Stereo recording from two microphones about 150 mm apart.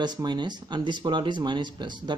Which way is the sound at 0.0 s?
30° right (ahead or behind).